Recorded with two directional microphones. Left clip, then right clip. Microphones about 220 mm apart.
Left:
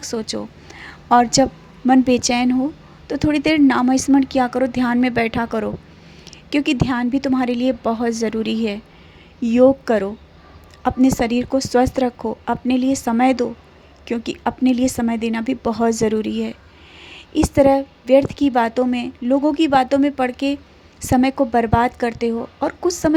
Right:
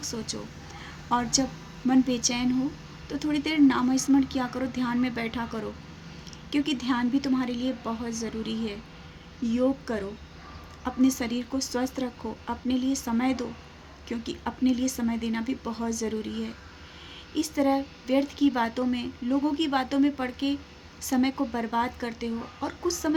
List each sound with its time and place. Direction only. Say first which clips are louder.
0.0 s a woman's voice: left 10 dB; 35° left (ahead or behind)